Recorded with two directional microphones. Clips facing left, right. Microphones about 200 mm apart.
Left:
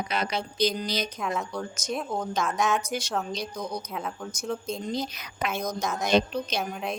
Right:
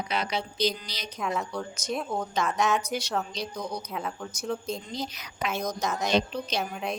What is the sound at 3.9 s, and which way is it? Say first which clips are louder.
Speech: even; centre (ahead or behind).